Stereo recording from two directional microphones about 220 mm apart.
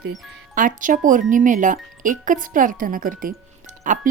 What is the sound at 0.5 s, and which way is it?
A woman's voice, 35° right (ahead or behind).